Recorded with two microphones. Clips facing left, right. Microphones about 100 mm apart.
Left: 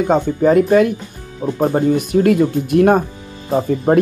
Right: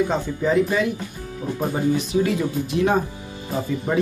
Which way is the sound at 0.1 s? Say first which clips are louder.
Left 8 dB; 50° left (ahead or behind).